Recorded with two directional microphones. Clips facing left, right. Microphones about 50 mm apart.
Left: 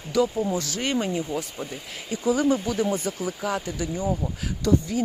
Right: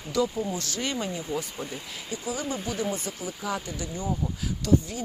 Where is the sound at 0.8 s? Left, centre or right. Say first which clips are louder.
Left 5 dB; left.